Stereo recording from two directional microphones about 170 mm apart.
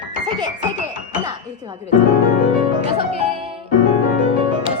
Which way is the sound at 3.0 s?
35° right (ahead or behind).